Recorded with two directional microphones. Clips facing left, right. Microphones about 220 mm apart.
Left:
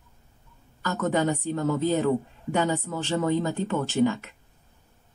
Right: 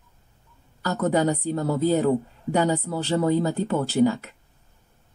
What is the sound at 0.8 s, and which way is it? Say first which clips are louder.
A man's voice: right 3 dB; 35° right (ahead or behind).